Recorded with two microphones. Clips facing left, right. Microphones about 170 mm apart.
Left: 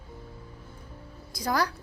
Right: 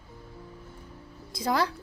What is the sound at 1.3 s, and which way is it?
Speech, 25° right (ahead or behind).